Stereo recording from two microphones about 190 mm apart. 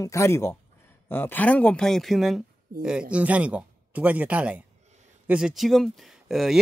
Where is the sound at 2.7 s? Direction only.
50° right (ahead or behind).